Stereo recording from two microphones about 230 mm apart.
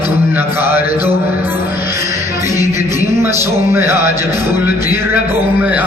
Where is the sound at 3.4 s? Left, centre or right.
Centre.